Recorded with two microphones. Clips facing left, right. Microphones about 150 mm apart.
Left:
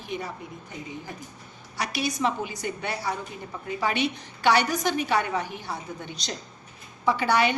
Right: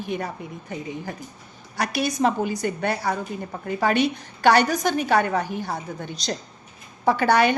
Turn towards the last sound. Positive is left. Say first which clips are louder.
# right 4 dB
turn(degrees=-50)  # may be behind; listen again after turning